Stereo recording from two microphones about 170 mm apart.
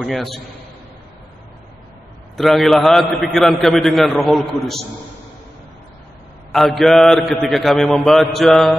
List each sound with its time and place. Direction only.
0.0 s a man's voice: centre (ahead or behind)
2.3 s a man's voice: centre (ahead or behind)
6.5 s a man's voice: centre (ahead or behind)